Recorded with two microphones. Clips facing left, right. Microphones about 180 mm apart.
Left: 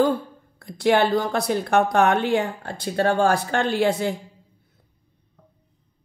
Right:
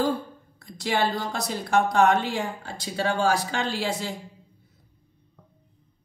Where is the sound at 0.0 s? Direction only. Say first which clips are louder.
Left 5 dB; 60° left (ahead or behind).